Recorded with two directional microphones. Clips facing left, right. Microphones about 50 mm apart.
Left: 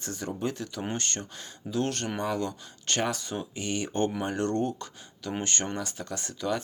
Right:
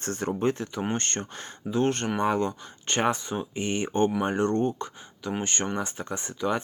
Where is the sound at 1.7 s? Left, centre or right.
Right.